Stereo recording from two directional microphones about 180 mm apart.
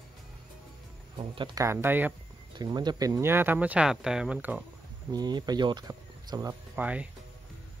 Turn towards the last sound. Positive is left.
turn(degrees=-10)  # may be behind; listen again after turning